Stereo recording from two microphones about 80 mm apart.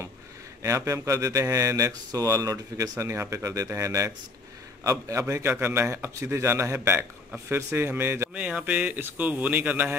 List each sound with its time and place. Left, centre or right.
0.6 s speech: right
8.4 s speech: centre